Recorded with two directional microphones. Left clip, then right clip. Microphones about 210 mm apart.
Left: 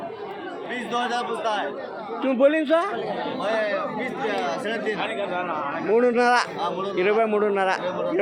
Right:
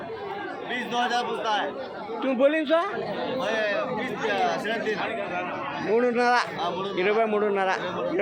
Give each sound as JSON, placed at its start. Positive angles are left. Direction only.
{"t": 0.9, "sound": "a man's voice", "side_deg": 5}
{"t": 5.0, "sound": "speech", "side_deg": 45}
{"t": 5.8, "sound": "a man's voice", "side_deg": 5}